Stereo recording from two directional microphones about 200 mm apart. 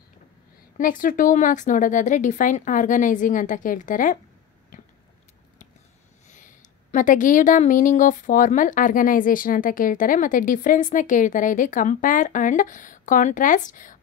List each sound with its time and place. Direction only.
0.7 s a woman's voice: 45° left (ahead or behind)
4.7 s biting: 40° left (ahead or behind)
6.2 s a woman's voice: 40° left (ahead or behind)